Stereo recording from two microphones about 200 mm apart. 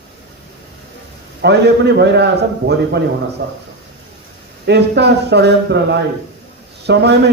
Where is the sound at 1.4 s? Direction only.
55° right (ahead or behind).